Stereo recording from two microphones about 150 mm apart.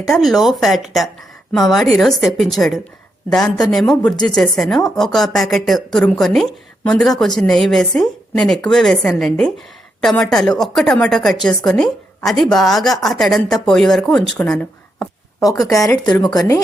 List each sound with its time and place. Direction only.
0.1 s speech: centre (ahead or behind)
15.4 s speech: 25° left (ahead or behind)
15.9 s a woman's voice: 5° left (ahead or behind)